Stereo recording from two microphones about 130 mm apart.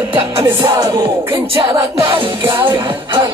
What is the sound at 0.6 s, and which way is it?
Music, 25° right (ahead or behind).